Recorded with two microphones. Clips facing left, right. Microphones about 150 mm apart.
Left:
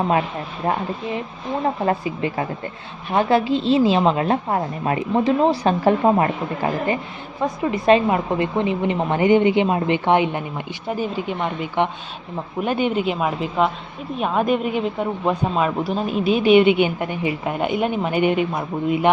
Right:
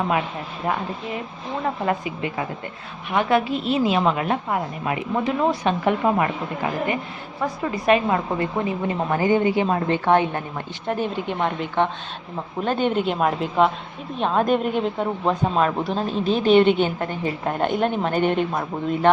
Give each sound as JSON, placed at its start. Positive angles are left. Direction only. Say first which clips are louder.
{"t": 1.6, "sound": "a woman's voice", "louder": "left 3 dB", "side_deg": 30}
{"t": 7.4, "sound": "a woman's voice", "louder": "left 3 dB", "side_deg": 20}
{"t": 10.8, "sound": "a woman's voice", "louder": "even", "side_deg": 5}